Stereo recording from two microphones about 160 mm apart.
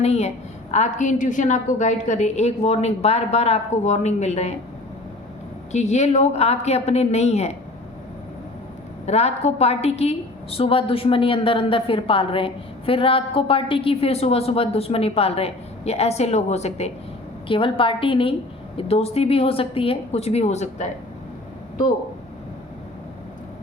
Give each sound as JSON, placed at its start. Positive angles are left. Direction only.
{"t": 0.0, "sound": "a woman's voice", "side_deg": 40}
{"t": 5.7, "sound": "a woman's voice", "side_deg": 45}
{"t": 9.0, "sound": "a woman's voice", "side_deg": 40}